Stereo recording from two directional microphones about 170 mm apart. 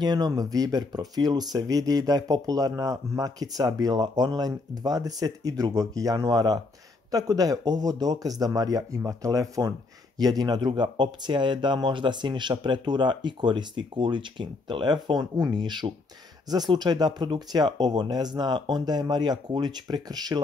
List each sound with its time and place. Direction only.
0.0 s a man's voice: 25° right (ahead or behind)